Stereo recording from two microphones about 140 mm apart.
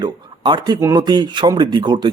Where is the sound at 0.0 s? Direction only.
30° right (ahead or behind).